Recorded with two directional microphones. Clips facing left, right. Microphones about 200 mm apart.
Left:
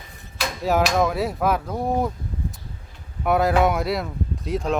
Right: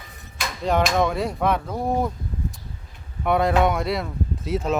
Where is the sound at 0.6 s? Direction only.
5° left (ahead or behind).